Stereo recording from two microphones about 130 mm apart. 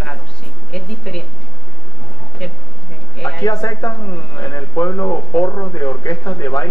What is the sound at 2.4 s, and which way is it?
Speech, 5° left (ahead or behind).